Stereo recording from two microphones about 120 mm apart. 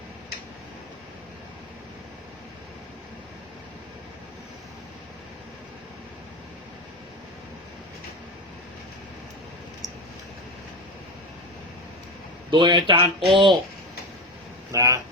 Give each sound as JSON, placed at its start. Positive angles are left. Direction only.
{"t": 12.5, "sound": "speech", "side_deg": -40}
{"t": 14.7, "sound": "speech", "side_deg": -30}